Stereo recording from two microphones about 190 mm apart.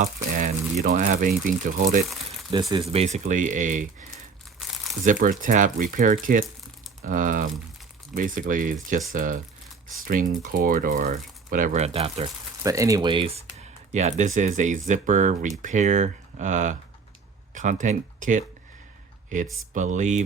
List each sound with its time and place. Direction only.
0.0 s speech: 45° right (ahead or behind)
2.5 s speech: 20° right (ahead or behind)
2.8 s speech: 30° right (ahead or behind)
5.0 s speech: 45° right (ahead or behind)
12.6 s speech: 15° right (ahead or behind); by 18.4 s 40° right (ahead or behind)
19.7 s speech: 40° right (ahead or behind)